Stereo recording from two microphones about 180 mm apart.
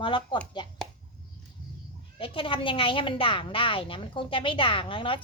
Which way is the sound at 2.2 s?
30° left (ahead or behind).